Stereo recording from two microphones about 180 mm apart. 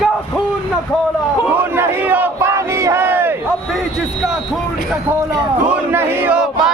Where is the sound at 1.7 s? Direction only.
10° right (ahead or behind).